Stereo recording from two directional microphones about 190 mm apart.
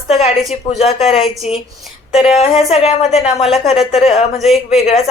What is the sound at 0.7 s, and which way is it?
A woman's voice, 35° left (ahead or behind).